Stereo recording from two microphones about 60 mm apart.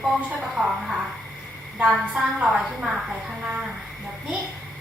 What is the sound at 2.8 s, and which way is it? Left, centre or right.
Speech, centre.